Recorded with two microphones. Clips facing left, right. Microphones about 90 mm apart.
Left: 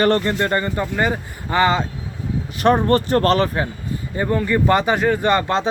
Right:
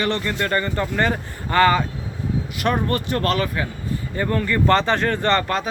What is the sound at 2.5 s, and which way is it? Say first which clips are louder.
Speech: left 7 dB; 35° left (ahead or behind).